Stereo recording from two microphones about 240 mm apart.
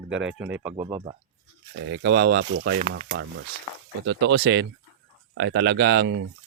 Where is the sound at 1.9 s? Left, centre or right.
Right.